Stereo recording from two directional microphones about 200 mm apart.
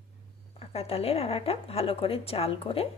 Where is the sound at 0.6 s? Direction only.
30° left (ahead or behind).